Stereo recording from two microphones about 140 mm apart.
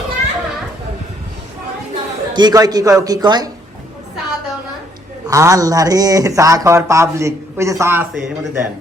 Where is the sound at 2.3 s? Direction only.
30° right (ahead or behind).